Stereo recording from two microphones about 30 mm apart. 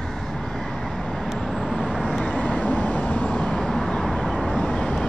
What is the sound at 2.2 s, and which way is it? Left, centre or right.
Vehicle, left.